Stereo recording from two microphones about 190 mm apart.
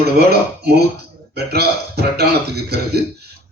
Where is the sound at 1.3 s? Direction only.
55° right (ahead or behind).